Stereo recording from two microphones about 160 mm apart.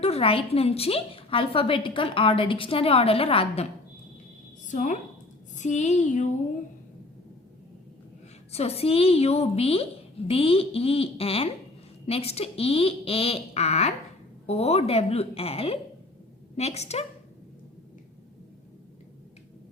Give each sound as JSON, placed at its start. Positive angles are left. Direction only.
{"t": 0.0, "sound": "a woman's voice", "side_deg": 40}
{"t": 4.7, "sound": "a woman's voice", "side_deg": 55}
{"t": 8.5, "sound": "a woman's voice", "side_deg": 40}